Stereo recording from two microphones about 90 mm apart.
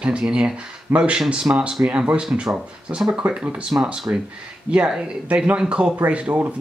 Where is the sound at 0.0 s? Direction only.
10° right (ahead or behind).